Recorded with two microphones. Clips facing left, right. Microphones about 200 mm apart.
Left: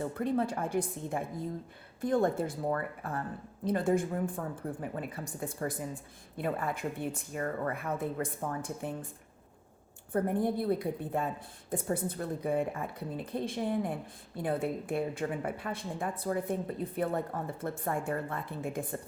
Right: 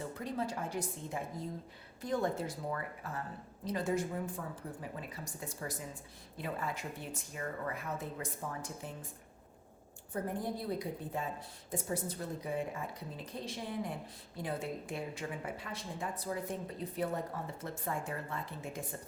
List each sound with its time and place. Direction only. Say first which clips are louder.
0.0 s a woman's voice: left 7 dB; 55° left (ahead or behind)
10.1 s a woman's voice: left 8 dB; 60° left (ahead or behind)